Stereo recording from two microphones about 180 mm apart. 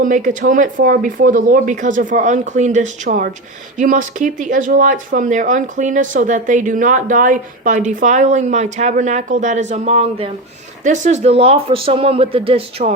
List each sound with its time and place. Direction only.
0.0 s speech: 45° right (ahead or behind)